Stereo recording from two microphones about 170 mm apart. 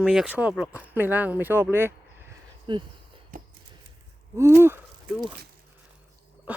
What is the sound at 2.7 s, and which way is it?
Speech, 25° right (ahead or behind).